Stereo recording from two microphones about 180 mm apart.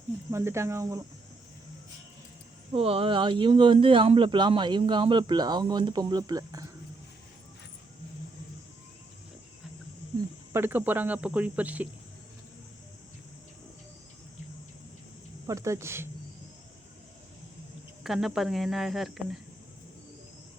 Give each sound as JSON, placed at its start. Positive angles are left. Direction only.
{"t": 0.3, "sound": "speech", "side_deg": -15}
{"t": 2.7, "sound": "speech", "side_deg": -30}
{"t": 10.2, "sound": "speech", "side_deg": -10}
{"t": 15.4, "sound": "speech", "side_deg": -15}
{"t": 18.0, "sound": "speech", "side_deg": 0}